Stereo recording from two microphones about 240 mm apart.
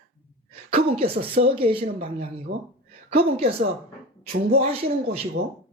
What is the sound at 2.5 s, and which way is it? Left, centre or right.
Speech, right.